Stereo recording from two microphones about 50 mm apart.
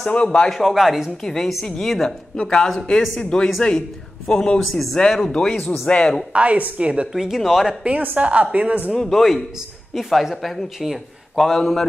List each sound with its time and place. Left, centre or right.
0.1 s a man's voice: left
0.5 s speech: centre
1.2 s a man's voice: centre; by 6.1 s left
6.3 s a woman's voice: right
7.1 s speech: centre
7.8 s a woman's voice: right
8.9 s speech: centre